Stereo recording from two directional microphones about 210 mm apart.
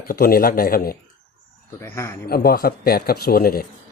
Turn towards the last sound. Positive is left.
turn(degrees=45)  # may be behind; listen again after turning